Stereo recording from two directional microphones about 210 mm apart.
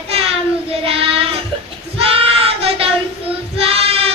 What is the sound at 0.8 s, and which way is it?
Child singing, 25° right (ahead or behind).